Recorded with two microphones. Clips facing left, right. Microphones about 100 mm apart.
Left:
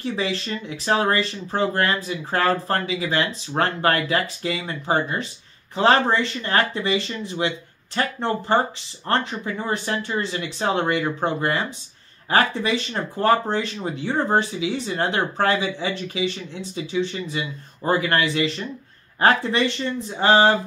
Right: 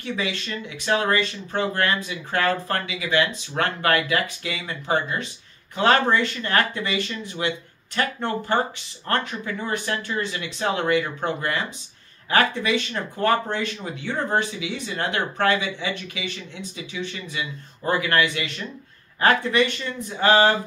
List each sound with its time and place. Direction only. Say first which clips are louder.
0.0 s speech: left 3 dB; 30° left (ahead or behind)